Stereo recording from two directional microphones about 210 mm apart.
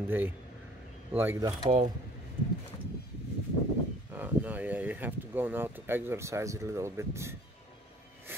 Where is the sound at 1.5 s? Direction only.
30° right (ahead or behind).